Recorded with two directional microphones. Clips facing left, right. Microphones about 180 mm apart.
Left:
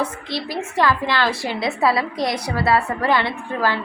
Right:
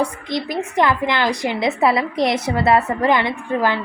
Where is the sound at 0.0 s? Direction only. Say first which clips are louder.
Right 3 dB; 15° right (ahead or behind).